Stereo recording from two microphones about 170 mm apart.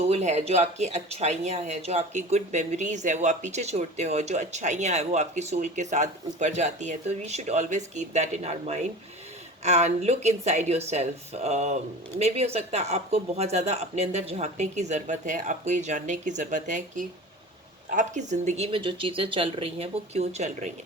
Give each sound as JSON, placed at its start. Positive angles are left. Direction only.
{"t": 0.0, "sound": "speech", "side_deg": -40}